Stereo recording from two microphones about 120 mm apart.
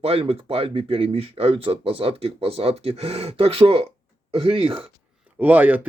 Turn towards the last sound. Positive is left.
turn(degrees=-15)  # may be behind; listen again after turning